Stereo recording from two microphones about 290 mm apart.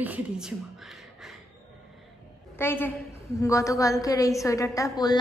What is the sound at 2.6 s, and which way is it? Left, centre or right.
A woman's voice, centre.